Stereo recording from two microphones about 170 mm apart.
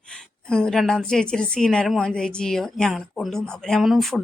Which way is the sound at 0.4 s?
5° left (ahead or behind).